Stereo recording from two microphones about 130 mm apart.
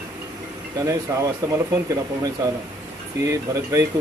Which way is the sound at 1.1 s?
20° right (ahead or behind).